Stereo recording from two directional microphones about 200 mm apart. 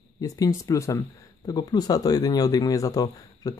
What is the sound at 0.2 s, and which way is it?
Speech, 15° left (ahead or behind).